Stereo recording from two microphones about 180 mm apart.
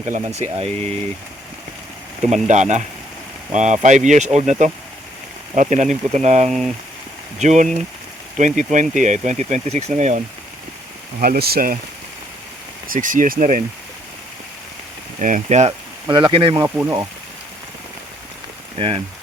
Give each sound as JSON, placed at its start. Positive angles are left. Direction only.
{"t": 0.0, "sound": "speech", "side_deg": -40}
{"t": 2.2, "sound": "speech", "side_deg": -40}
{"t": 6.5, "sound": "speech", "side_deg": 0}
{"t": 7.3, "sound": "speech", "side_deg": -40}
{"t": 11.2, "sound": "speech", "side_deg": -55}
{"t": 12.9, "sound": "speech", "side_deg": -45}
{"t": 15.2, "sound": "speech", "side_deg": -40}
{"t": 16.0, "sound": "speech", "side_deg": -25}
{"t": 16.6, "sound": "speech", "side_deg": -10}
{"t": 18.8, "sound": "speech", "side_deg": -30}